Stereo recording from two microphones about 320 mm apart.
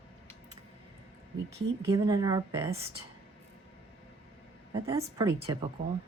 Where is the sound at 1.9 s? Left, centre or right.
Centre.